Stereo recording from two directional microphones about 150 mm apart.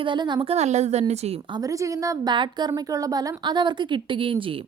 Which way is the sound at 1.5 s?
25° right (ahead or behind).